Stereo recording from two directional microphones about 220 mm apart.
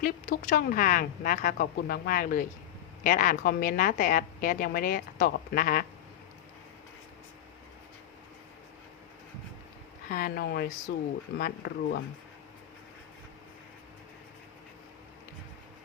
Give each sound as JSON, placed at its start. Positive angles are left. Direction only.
{"t": 0.0, "sound": "a woman's voice", "side_deg": 40}
{"t": 10.1, "sound": "speech", "side_deg": 40}